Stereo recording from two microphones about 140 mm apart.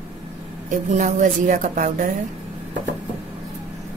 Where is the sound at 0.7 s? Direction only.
65° right (ahead or behind).